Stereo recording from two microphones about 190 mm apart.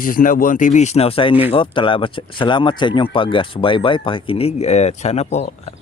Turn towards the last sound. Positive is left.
turn(degrees=35)  # may be behind; listen again after turning